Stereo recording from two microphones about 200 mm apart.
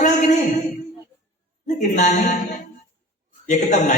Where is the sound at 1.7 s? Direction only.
35° left (ahead or behind).